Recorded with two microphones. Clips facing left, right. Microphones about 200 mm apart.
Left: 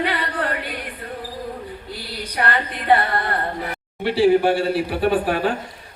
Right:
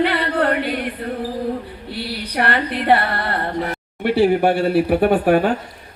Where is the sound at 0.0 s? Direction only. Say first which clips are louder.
Right 6 dB; 65° right (ahead or behind).